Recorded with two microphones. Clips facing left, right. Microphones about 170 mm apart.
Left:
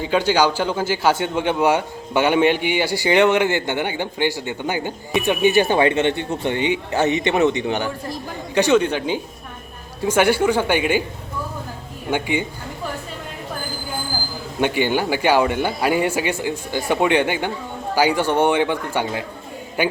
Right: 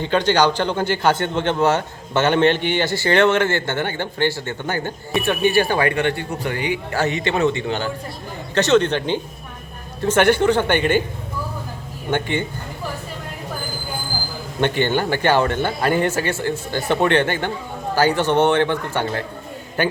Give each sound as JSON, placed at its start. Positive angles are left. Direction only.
{"t": 0.0, "sound": "a man's voice", "side_deg": 5}
{"t": 12.1, "sound": "a man's voice", "side_deg": 10}
{"t": 14.6, "sound": "a man's voice", "side_deg": 10}